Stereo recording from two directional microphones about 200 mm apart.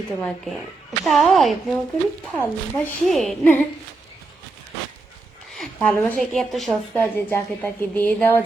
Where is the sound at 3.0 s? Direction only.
Centre (ahead or behind).